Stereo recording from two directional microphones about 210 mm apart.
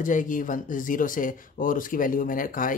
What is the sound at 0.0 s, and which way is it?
Speech, 40° left (ahead or behind).